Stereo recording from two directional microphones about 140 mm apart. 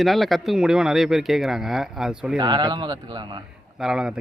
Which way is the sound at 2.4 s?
30° right (ahead or behind).